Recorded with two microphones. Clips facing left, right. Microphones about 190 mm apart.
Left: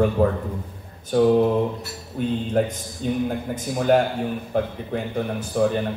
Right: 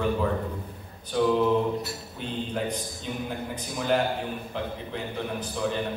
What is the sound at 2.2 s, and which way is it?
A man's voice, 50° left (ahead or behind).